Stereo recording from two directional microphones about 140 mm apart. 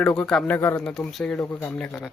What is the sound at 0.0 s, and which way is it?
Speech, 5° left (ahead or behind).